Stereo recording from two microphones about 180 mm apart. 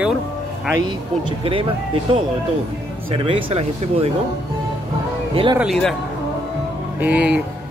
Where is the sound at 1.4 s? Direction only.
30° right (ahead or behind).